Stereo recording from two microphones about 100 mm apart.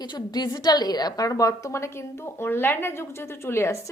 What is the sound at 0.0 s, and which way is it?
A woman's voice, 45° left (ahead or behind).